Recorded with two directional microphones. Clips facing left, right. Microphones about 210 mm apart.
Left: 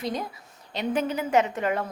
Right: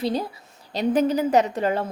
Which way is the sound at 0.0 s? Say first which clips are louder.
Right 5 dB; 30° right (ahead or behind).